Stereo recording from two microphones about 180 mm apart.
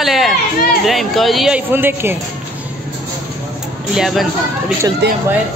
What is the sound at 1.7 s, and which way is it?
Speech, 10° right (ahead or behind).